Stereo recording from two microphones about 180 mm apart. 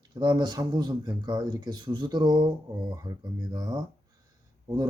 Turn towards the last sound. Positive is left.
turn(degrees=-20)  # may be behind; listen again after turning